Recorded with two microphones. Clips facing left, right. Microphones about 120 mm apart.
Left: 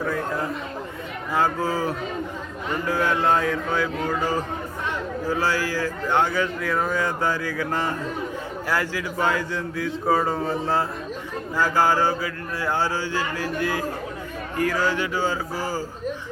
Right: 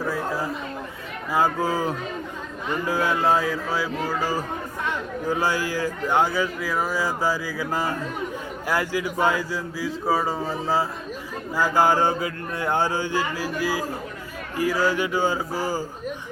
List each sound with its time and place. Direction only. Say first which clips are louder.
0.0 s a sound: even; 5° right (ahead or behind)
1.3 s a man's voice: right 1 dB; 15° right (ahead or behind)
11.5 s a man's voice: right 1 dB; 15° right (ahead or behind)